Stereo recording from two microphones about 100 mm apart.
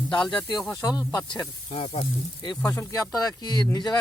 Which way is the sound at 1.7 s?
65° left (ahead or behind).